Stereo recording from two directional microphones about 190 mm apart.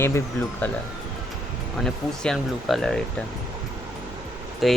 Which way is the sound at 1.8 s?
Centre (ahead or behind).